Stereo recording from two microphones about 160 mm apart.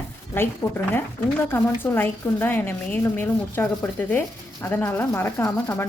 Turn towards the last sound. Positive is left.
turn(degrees=15)  # may be behind; listen again after turning